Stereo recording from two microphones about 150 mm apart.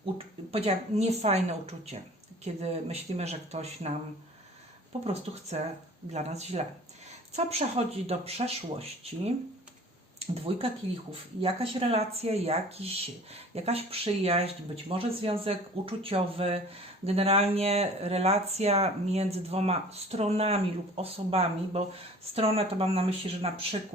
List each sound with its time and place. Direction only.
0.5 s speech: 45° right (ahead or behind)
5.0 s speech: 45° right (ahead or behind)